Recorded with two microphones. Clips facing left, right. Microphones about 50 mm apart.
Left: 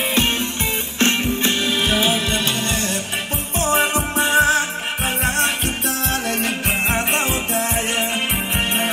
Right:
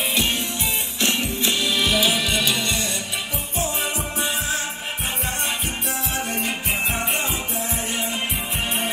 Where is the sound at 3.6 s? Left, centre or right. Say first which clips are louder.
Left 8 dB; left.